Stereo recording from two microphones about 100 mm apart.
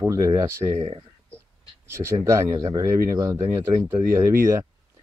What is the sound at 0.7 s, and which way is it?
Speech, 90° right.